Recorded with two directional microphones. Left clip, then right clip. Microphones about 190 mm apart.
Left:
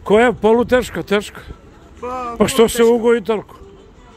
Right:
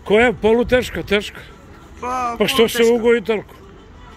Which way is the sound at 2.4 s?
30° left (ahead or behind).